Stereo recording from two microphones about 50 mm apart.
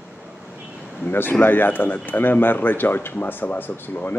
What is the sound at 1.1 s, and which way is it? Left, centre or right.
Speech, left.